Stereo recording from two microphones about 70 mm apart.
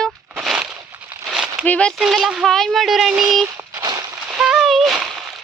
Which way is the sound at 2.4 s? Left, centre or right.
Centre.